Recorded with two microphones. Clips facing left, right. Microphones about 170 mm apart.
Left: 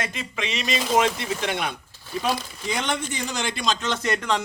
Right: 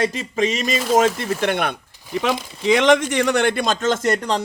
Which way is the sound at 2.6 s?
90° right.